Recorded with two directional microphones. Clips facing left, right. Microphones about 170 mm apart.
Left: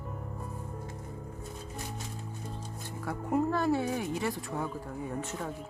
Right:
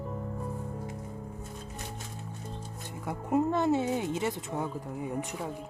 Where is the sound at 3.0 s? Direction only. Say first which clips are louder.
Right 2 dB; 20° right (ahead or behind).